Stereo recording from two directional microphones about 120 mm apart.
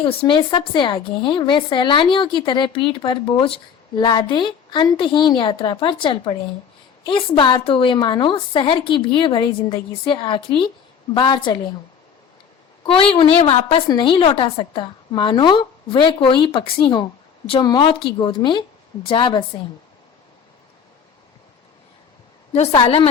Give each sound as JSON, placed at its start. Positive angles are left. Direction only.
{"t": 0.0, "sound": "a woman's voice", "side_deg": 50}
{"t": 12.8, "sound": "a woman's voice", "side_deg": 45}
{"t": 13.8, "sound": "a woman's voice", "side_deg": 40}
{"t": 22.5, "sound": "a woman's voice", "side_deg": 65}
{"t": 22.8, "sound": "a woman's voice", "side_deg": 45}